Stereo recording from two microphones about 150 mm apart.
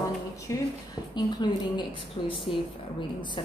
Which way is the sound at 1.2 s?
30° left (ahead or behind).